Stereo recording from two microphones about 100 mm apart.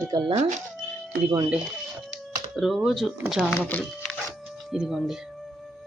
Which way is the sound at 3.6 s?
15° left (ahead or behind).